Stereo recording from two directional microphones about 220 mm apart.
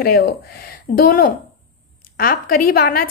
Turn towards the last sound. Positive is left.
turn(degrees=40)  # may be behind; listen again after turning